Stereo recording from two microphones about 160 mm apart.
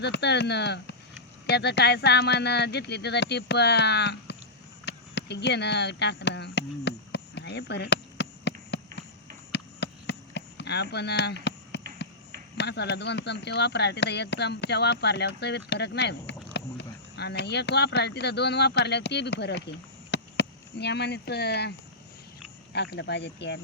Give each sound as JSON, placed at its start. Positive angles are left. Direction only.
{"t": 0.0, "sound": "speech", "side_deg": 90}
{"t": 4.9, "sound": "a sound", "side_deg": 90}
{"t": 9.5, "sound": "chop", "side_deg": 90}
{"t": 11.7, "sound": "a sound", "side_deg": 90}
{"t": 12.5, "sound": "speech", "side_deg": 90}
{"t": 22.7, "sound": "speech", "side_deg": 90}